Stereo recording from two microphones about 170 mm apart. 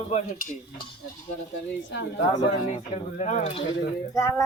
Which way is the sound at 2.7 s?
45° left (ahead or behind).